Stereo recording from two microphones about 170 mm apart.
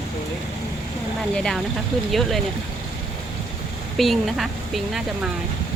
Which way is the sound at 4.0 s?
Centre (ahead or behind).